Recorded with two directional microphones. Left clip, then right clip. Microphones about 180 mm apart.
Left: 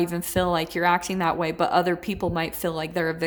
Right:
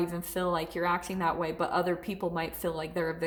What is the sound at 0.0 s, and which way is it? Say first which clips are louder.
A woman's voice: left 7 dB; 35° left (ahead or behind).